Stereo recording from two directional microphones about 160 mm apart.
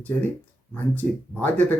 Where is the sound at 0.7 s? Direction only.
10° left (ahead or behind).